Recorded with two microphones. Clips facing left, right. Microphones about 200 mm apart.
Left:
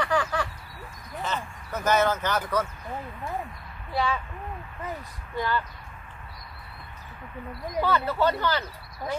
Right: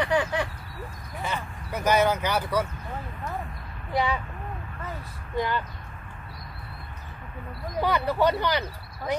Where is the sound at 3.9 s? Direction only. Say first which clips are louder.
Right 1 dB; 15° right (ahead or behind).